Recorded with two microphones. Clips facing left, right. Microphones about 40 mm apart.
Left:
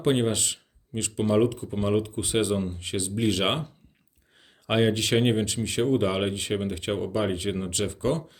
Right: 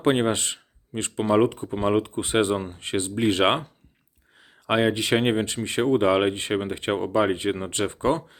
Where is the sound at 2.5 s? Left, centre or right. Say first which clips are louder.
Right 1 dB; right.